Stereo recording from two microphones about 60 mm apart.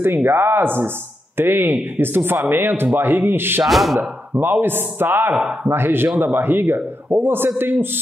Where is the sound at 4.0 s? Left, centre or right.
Right.